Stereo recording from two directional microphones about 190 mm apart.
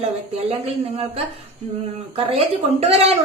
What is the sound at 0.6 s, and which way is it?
A woman's voice, 30° right (ahead or behind).